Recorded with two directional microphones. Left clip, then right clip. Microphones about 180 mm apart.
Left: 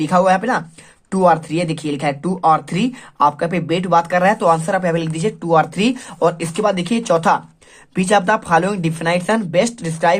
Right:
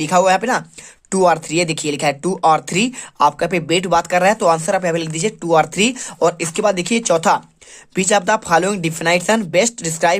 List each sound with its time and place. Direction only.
0.0 s speech: 35° right (ahead or behind)